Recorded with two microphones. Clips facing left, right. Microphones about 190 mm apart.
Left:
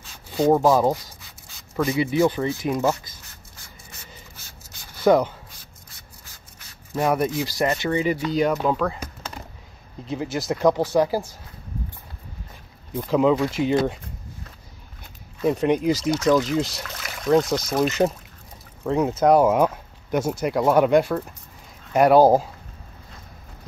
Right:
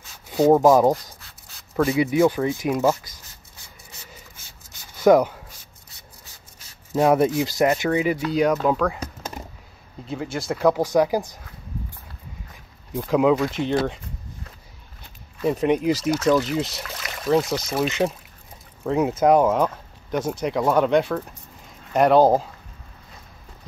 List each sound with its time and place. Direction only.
0.1 s rub: 5° right (ahead or behind)
0.7 s speech: 20° right (ahead or behind)
1.2 s a sound: centre (ahead or behind)
2.0 s speech: 10° right (ahead or behind)
5.0 s speech: 10° right (ahead or behind)
7.0 s speech: 15° right (ahead or behind); by 8.9 s centre (ahead or behind)
10.0 s speech: 5° left (ahead or behind); by 11.2 s 15° right (ahead or behind)
12.9 s speech: 5° right (ahead or behind)
15.4 s speech: centre (ahead or behind)